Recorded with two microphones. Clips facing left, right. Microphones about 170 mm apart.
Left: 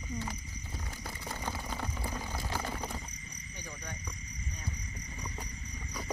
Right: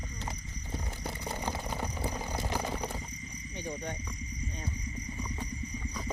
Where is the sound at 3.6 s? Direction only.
25° right (ahead or behind).